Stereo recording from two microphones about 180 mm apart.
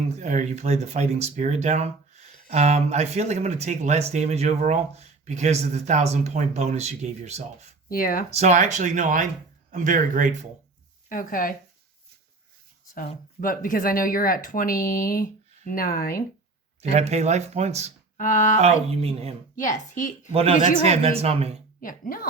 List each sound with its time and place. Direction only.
0.2 s speech: 40° right (ahead or behind)
7.9 s speech: 50° left (ahead or behind)
8.3 s speech: 40° right (ahead or behind)
11.1 s speech: 50° left (ahead or behind)
12.9 s speech: 50° left (ahead or behind)
16.9 s speech: 35° right (ahead or behind)
18.2 s speech: 45° left (ahead or behind)
18.6 s speech: 35° right (ahead or behind)
19.5 s speech: 45° left (ahead or behind)
20.3 s speech: 35° right (ahead or behind)
21.8 s speech: 50° left (ahead or behind)